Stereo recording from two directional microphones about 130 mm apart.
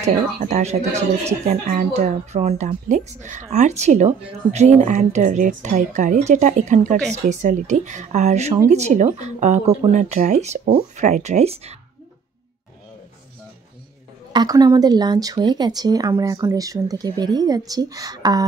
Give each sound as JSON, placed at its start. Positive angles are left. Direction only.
{"t": 0.0, "sound": "a woman's voice", "side_deg": -60}
{"t": 14.3, "sound": "speech", "side_deg": -30}